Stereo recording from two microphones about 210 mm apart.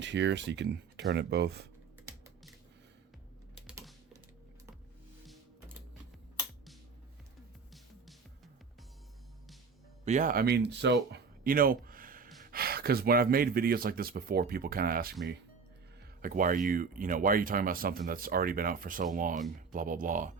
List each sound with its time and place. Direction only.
0.0 s speech: 55° right (ahead or behind)
10.0 s speech: 35° right (ahead or behind)
16.2 s speech: 40° right (ahead or behind)